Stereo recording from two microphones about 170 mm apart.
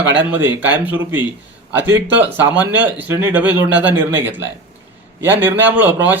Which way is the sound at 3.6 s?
90° right.